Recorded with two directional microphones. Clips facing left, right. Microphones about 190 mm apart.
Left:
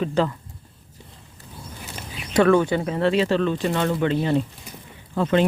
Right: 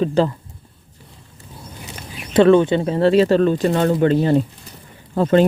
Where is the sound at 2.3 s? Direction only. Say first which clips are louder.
Right 5 dB; 25° right (ahead or behind).